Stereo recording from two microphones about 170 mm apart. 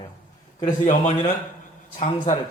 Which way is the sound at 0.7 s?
50° left (ahead or behind).